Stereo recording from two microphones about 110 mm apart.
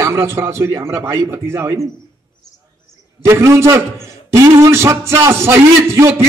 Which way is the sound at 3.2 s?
25° right (ahead or behind).